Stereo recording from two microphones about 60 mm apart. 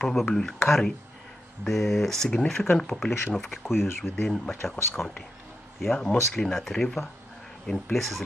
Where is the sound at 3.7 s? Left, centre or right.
Left.